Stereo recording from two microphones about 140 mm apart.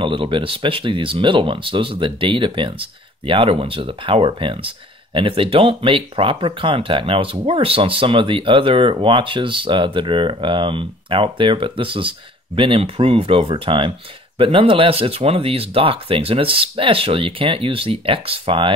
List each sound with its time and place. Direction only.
0.0 s speech: 35° right (ahead or behind)